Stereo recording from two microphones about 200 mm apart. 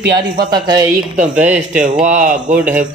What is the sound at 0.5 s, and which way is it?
Speech, 20° right (ahead or behind).